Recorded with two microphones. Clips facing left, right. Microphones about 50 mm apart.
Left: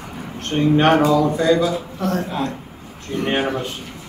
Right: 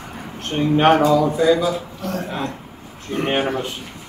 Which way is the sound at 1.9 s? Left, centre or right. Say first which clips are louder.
Left 4 dB; left.